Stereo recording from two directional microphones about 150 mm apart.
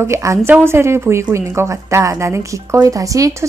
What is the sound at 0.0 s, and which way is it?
A woman's voice, 20° right (ahead or behind).